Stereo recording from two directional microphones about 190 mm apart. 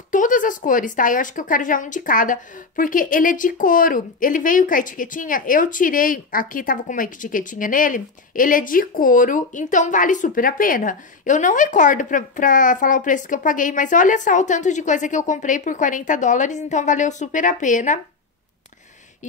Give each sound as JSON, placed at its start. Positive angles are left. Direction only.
{"t": 0.1, "sound": "speech", "side_deg": 45}